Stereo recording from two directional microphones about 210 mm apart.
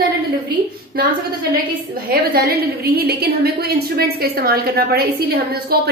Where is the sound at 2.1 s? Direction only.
45° right (ahead or behind).